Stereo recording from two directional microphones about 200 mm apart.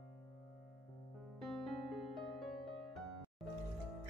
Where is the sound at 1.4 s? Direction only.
Centre (ahead or behind).